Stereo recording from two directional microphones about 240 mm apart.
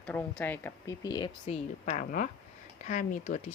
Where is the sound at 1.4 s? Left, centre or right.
Left.